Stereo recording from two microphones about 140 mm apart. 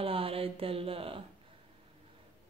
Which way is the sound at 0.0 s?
40° right (ahead or behind).